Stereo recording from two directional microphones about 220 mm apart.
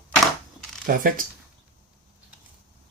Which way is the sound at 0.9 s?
40° right (ahead or behind).